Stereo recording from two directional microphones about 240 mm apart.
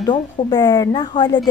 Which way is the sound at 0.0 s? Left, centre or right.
Centre.